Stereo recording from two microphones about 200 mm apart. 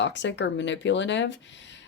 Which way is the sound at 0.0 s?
65° left (ahead or behind).